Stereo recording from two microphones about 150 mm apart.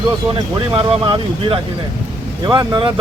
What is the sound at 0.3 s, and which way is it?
Speech, 30° right (ahead or behind).